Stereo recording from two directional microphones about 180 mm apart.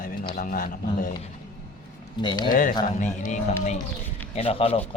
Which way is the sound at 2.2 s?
25° left (ahead or behind).